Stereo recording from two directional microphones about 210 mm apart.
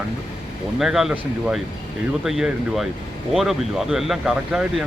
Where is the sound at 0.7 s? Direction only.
Centre (ahead or behind).